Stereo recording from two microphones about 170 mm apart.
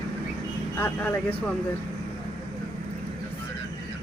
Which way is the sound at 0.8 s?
10° left (ahead or behind).